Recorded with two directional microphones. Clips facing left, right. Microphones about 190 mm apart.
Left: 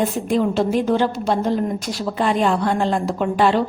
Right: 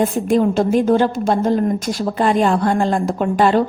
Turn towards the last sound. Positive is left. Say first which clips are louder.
# right 2 dB
turn(degrees=-45)  # may be behind; listen again after turning